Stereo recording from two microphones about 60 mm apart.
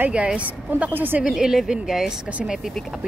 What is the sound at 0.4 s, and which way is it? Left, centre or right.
Speech, right.